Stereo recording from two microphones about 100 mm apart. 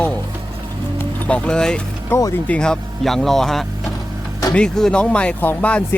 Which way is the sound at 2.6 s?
5° left (ahead or behind).